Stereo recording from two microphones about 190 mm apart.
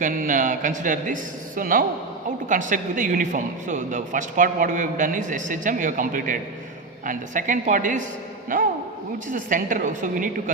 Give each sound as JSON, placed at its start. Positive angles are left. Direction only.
{"t": 0.0, "sound": "speech", "side_deg": -45}